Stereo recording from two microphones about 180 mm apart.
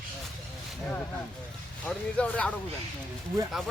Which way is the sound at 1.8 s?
5° left (ahead or behind).